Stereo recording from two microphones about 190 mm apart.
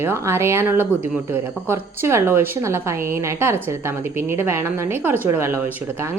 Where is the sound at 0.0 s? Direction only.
15° right (ahead or behind).